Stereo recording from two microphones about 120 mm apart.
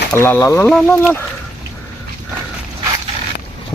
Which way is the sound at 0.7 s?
5° left (ahead or behind).